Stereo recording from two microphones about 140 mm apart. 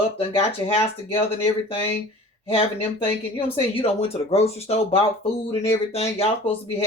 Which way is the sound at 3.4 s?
45° left (ahead or behind).